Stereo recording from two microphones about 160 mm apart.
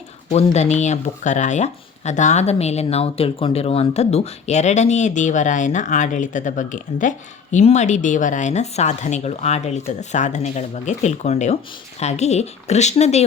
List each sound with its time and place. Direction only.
0.3 s speech: 45° left (ahead or behind)